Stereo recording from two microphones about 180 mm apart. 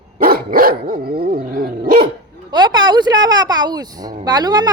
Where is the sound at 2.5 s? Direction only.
25° right (ahead or behind).